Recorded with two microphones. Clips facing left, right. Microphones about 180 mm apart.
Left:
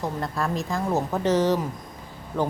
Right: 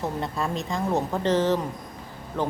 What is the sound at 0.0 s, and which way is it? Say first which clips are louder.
A woman's voice: even; centre (ahead or behind).